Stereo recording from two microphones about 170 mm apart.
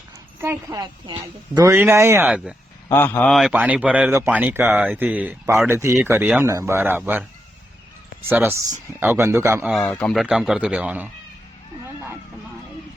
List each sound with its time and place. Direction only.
0.4 s a woman's voice: 25° right (ahead or behind); by 2.6 s 5° right (ahead or behind)
2.9 s a man's voice: 10° left (ahead or behind); by 7.3 s 10° right (ahead or behind)
8.3 s a man's voice: 15° right (ahead or behind)
9.6 s speech: 5° left (ahead or behind)